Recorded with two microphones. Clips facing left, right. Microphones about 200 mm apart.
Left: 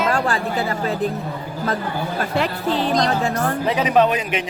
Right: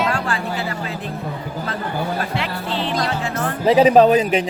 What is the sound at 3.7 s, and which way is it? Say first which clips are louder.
Speech: right 7 dB; 30° right (ahead or behind).